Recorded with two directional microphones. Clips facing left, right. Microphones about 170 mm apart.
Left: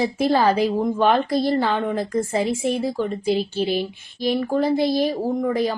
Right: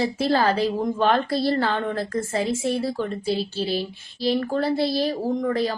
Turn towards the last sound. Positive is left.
turn(degrees=15)  # may be behind; listen again after turning